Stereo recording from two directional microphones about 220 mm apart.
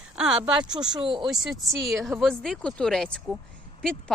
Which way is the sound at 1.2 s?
Centre (ahead or behind).